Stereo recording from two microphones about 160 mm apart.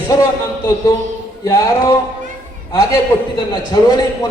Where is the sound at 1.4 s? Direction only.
20° left (ahead or behind).